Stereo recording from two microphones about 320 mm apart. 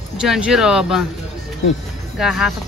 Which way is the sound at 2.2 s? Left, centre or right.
Centre.